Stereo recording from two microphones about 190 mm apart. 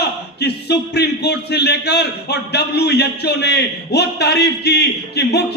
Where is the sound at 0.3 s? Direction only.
60° left (ahead or behind).